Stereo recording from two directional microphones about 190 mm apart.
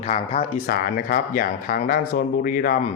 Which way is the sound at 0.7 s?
50° left (ahead or behind).